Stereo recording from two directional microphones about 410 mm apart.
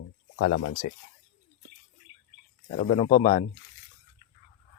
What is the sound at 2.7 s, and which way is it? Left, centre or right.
Speech, centre.